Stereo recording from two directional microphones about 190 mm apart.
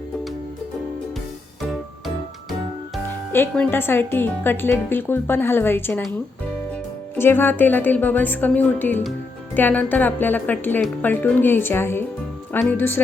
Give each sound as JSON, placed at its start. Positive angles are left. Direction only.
{"t": 2.5, "sound": "music", "side_deg": 0}
{"t": 3.3, "sound": "speech", "side_deg": 10}
{"t": 7.2, "sound": "speech", "side_deg": 10}